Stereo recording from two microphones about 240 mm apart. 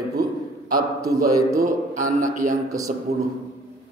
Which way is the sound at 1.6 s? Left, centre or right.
Right.